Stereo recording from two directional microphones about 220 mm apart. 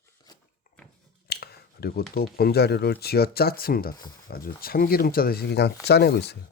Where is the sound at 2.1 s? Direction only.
45° left (ahead or behind).